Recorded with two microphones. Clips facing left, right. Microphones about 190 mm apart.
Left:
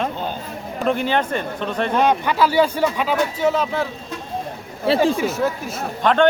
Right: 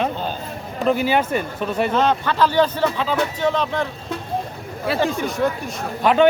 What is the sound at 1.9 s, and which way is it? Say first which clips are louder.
Speech: left 4 dB; 15° left (ahead or behind).